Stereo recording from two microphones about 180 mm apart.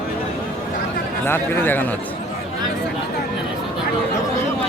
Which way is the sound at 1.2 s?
10° left (ahead or behind).